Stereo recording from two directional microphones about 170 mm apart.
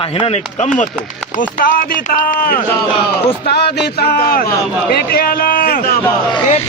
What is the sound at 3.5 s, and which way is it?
A man's voice, 75° left (ahead or behind).